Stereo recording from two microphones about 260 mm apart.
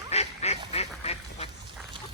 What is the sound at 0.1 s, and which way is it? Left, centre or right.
Duck, left.